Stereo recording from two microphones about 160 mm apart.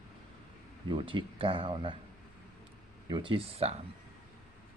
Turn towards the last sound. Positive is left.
turn(degrees=-35)  # may be behind; listen again after turning